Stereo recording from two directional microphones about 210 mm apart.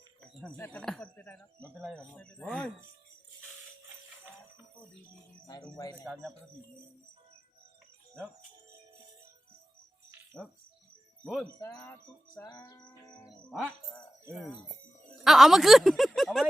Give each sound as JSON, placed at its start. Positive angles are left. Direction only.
{"t": 0.2, "sound": "speech", "side_deg": 5}
{"t": 5.7, "sound": "speech", "side_deg": 15}
{"t": 10.3, "sound": "speech", "side_deg": 5}
{"t": 11.4, "sound": "speech", "side_deg": 15}
{"t": 13.5, "sound": "speech", "side_deg": 0}
{"t": 15.2, "sound": "speech", "side_deg": 0}